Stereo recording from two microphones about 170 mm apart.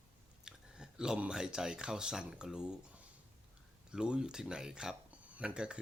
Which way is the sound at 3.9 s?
5° right (ahead or behind).